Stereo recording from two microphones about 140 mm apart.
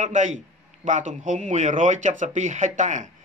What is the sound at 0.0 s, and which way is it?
Speech, 60° right (ahead or behind).